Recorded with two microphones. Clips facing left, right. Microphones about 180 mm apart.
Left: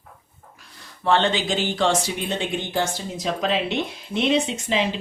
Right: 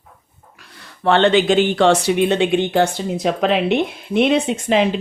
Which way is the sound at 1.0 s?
65° right (ahead or behind).